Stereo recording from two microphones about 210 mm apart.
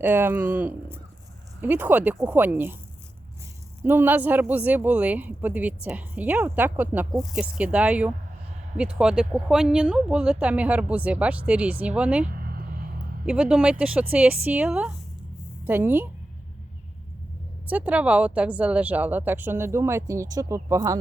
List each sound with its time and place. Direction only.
0.0 s speech: 10° right (ahead or behind)
3.8 s speech: 10° right (ahead or behind)
12.2 s a sound: 45° right (ahead or behind)
13.2 s speech: 5° right (ahead or behind)
17.7 s speech: 5° right (ahead or behind)